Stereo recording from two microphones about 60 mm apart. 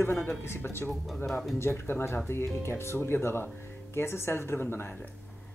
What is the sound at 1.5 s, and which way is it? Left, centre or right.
Speech, left.